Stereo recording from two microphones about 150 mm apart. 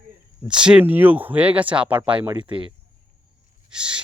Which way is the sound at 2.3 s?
35° right (ahead or behind).